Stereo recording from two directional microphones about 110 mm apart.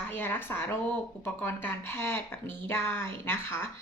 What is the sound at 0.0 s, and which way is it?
A woman's voice, 20° left (ahead or behind).